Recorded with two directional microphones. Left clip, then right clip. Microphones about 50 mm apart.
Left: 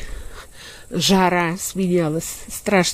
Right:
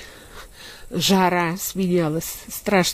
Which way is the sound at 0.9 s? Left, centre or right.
Right.